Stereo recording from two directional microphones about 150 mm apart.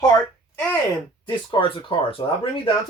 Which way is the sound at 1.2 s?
35° left (ahead or behind).